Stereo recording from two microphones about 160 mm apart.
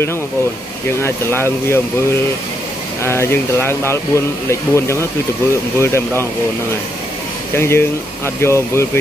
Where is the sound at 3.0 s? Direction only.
15° left (ahead or behind).